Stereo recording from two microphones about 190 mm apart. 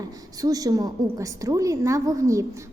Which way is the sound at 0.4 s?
20° right (ahead or behind).